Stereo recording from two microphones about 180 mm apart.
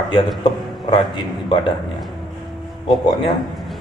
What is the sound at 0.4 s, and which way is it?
Speech, 25° left (ahead or behind).